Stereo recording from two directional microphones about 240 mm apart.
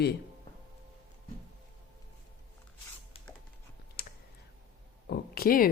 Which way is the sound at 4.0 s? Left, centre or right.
Left.